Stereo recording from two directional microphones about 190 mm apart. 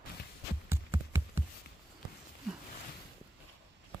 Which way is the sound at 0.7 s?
15° right (ahead or behind).